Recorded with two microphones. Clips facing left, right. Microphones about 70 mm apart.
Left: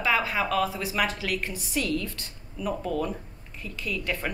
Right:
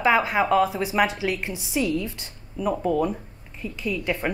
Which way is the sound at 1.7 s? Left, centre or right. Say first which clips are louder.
Right 4 dB; centre.